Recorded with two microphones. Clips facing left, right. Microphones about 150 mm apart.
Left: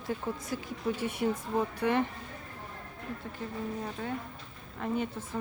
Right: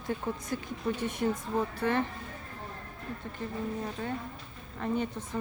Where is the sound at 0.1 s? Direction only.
5° left (ahead or behind).